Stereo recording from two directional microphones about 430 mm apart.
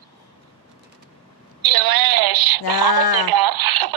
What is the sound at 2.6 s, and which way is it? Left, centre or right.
Speech, left.